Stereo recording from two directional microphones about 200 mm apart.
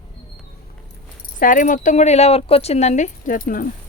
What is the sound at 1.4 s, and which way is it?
Speech, 40° left (ahead or behind).